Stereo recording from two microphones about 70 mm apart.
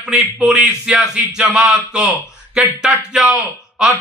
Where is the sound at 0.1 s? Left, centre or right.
Centre.